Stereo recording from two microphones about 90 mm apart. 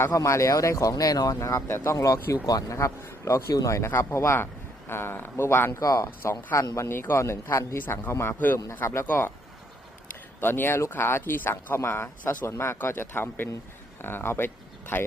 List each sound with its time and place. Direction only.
0.0 s a man's voice: 35° left (ahead or behind)
5.8 s a man's voice: 40° left (ahead or behind); by 9.3 s 25° left (ahead or behind)
10.4 s a man's voice: 25° left (ahead or behind)